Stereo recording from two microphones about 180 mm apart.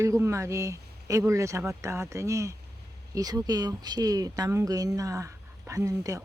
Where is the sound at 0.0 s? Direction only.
15° right (ahead or behind).